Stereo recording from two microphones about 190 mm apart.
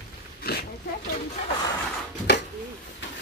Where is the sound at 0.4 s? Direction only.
55° left (ahead or behind).